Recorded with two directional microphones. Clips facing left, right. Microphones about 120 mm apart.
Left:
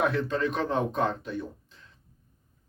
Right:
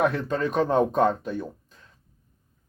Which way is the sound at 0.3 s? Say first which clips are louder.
Right 4 dB; 40° right (ahead or behind).